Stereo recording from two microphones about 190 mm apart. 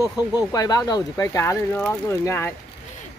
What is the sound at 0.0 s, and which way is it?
Speech, 20° left (ahead or behind).